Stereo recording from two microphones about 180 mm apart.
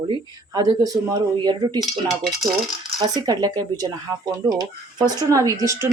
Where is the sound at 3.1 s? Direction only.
20° right (ahead or behind).